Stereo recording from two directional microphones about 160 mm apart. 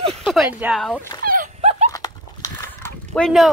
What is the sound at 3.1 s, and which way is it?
Speech, centre (ahead or behind).